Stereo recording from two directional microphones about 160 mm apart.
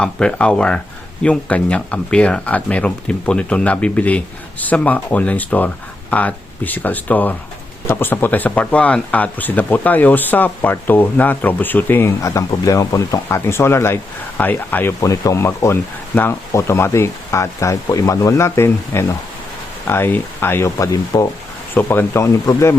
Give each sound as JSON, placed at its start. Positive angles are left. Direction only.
{"t": 0.0, "sound": "speech", "side_deg": 5}